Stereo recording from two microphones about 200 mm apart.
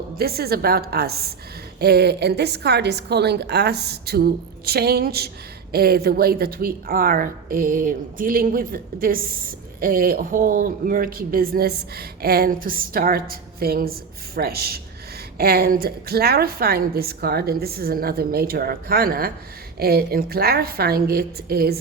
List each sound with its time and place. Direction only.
0.2 s a woman's voice: 50° right (ahead or behind)